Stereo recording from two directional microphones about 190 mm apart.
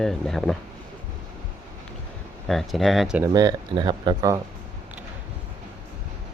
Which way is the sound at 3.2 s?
20° right (ahead or behind).